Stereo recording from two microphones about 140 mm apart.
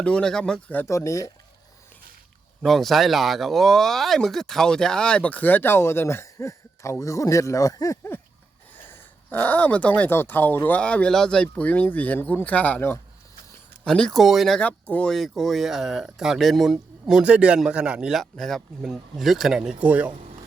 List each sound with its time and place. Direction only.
0.0 s speech: 5° left (ahead or behind); by 1.3 s 25° left (ahead or behind)
2.6 s speech: centre (ahead or behind)